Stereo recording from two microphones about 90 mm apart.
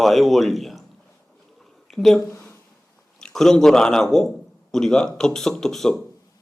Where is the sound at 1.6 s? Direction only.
5° left (ahead or behind).